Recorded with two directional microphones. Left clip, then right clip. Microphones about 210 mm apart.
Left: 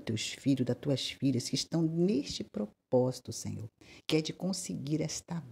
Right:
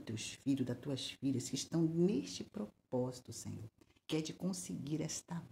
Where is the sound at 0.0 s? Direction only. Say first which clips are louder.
Left 8 dB; 30° left (ahead or behind).